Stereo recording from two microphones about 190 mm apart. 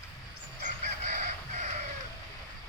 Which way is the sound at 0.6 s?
40° right (ahead or behind).